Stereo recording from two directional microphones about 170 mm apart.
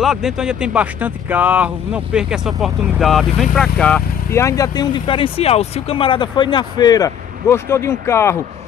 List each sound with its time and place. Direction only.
0.0 s speech: 5° right (ahead or behind); by 8.4 s 15° left (ahead or behind)